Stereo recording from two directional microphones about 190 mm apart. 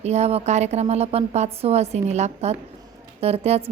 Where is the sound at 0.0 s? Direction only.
35° right (ahead or behind).